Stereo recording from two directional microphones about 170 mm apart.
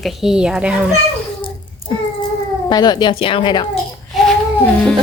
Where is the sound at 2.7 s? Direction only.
25° left (ahead or behind).